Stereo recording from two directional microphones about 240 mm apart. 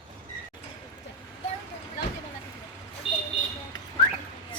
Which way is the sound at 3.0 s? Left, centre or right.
Left.